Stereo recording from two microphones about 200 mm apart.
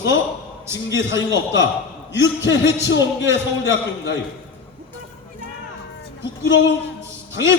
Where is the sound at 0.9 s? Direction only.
65° left (ahead or behind).